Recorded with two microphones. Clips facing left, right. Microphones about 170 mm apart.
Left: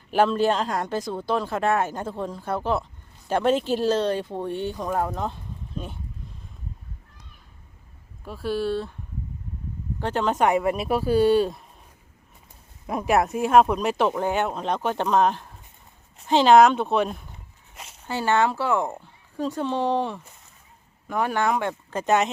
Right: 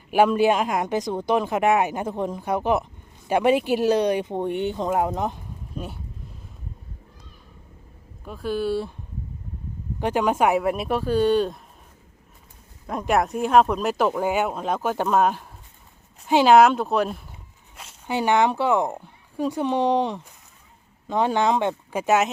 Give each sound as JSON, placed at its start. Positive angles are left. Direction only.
{"t": 0.1, "sound": "speech", "side_deg": -10}
{"t": 8.2, "sound": "speech", "side_deg": 0}
{"t": 10.0, "sound": "speech", "side_deg": -10}
{"t": 12.9, "sound": "speech", "side_deg": 5}
{"t": 18.0, "sound": "speech", "side_deg": -15}